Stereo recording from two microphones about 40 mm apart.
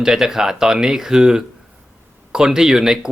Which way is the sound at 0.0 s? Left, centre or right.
Centre.